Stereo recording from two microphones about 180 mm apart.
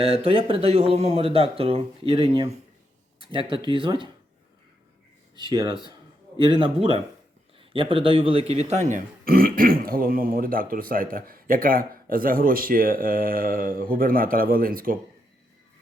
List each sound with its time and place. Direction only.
0.0 s speech: 30° right (ahead or behind)
5.4 s a man's voice: 25° right (ahead or behind); by 14.9 s 50° right (ahead or behind)